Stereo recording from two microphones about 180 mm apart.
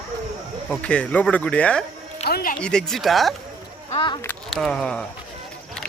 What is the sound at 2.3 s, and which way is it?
Music, 55° left (ahead or behind).